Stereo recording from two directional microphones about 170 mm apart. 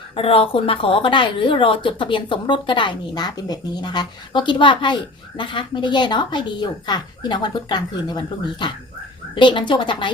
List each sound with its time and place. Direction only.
0.2 s speech: 35° left (ahead or behind)